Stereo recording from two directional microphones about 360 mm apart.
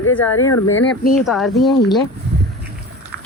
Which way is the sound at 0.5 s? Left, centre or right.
Left.